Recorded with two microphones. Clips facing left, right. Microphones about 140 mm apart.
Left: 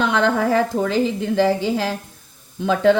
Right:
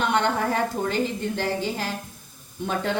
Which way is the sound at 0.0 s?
90° left.